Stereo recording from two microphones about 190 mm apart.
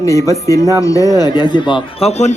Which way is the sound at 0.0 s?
15° left (ahead or behind).